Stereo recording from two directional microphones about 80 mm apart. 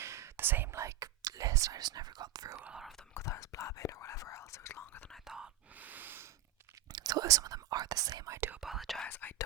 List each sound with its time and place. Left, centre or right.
0.0 s whispering: right
2.6 s speech: centre
3.2 s speech: left
5.2 s whispering: centre
5.7 s snort: right
6.9 s speech: right
8.4 s speech: right
8.6 s speech: centre
9.0 s speech: left